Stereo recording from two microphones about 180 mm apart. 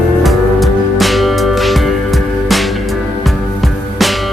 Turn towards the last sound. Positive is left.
turn(degrees=0)  # may be behind; listen again after turning